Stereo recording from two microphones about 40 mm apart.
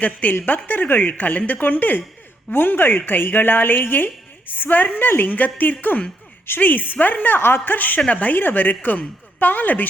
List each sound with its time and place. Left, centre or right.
0.0 s speech: left
4.5 s speech: left
8.4 s speech: left